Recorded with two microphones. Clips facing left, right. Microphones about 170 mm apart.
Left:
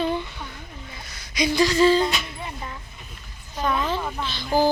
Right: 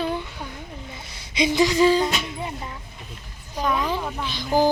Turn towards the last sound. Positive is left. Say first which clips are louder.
# right 1 dB
turn(degrees=-15)  # may be behind; listen again after turning